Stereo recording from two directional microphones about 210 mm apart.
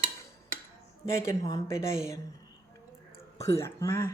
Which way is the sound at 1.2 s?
15° left (ahead or behind).